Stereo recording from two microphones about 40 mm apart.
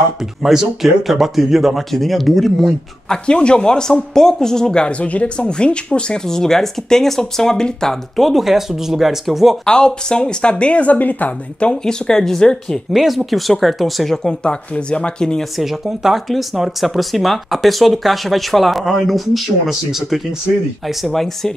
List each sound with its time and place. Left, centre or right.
0.4 s speech: centre
3.1 s speech: left
5.0 s speech: left
6.2 s speech: centre
8.2 s speech: centre
9.7 s speech: centre; by 11.3 s left
11.6 s speech: centre
12.9 s speech: centre
14.4 s speech: left
15.5 s speech: centre
21.0 s speech: centre